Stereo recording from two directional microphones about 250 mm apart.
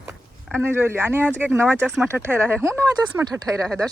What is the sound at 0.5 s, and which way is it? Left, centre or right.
Speech, centre.